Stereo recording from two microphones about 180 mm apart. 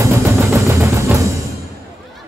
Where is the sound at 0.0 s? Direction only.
15° right (ahead or behind).